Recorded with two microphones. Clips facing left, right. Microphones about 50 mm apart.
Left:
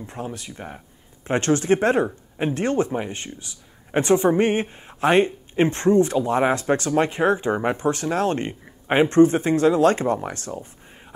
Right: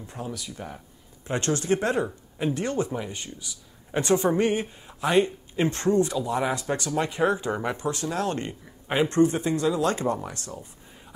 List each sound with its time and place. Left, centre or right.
0.0 s speech: left